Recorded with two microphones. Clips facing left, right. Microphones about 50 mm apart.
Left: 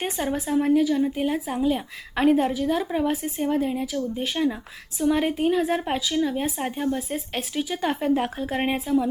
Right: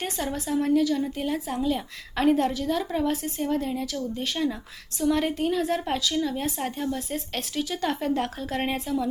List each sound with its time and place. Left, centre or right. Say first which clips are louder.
0.0 s a woman's voice: left 3 dB; centre